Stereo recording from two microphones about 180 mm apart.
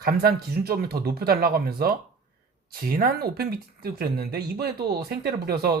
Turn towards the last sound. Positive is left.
turn(degrees=-60)  # may be behind; listen again after turning